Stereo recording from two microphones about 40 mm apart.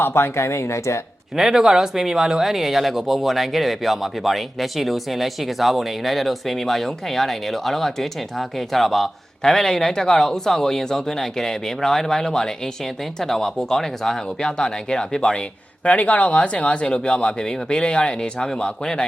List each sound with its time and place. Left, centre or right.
0.0 s speech: left
1.4 s speech: centre
15.8 s speech: left
16.8 s speech: left